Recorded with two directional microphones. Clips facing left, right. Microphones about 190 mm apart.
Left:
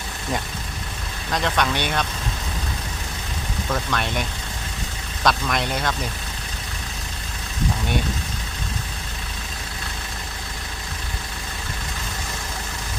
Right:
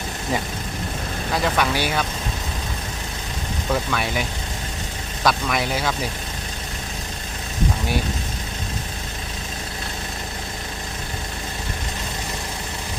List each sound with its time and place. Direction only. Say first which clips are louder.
1.3 s speech: right 1 dB; 5° right (ahead or behind)
3.7 s speech: right 2 dB; 5° right (ahead or behind)